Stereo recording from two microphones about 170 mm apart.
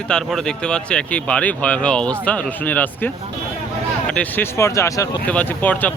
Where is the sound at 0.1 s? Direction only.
5° left (ahead or behind).